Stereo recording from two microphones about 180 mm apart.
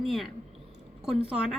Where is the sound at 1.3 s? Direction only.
5° right (ahead or behind).